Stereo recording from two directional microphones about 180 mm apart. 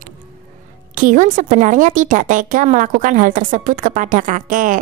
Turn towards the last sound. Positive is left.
turn(degrees=-45)  # may be behind; listen again after turning